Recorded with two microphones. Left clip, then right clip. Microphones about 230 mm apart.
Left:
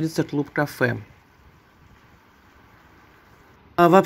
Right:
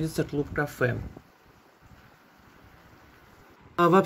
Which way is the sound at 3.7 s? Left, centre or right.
Left.